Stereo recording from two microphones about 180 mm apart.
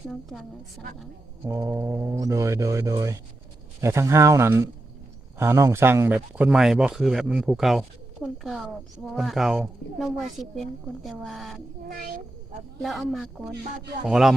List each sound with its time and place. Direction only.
0.1 s speech: centre (ahead or behind)
1.5 s speech: 15° right (ahead or behind); by 11.5 s centre (ahead or behind)
11.9 s a child's voice: 55° right (ahead or behind)
12.8 s speech: centre (ahead or behind)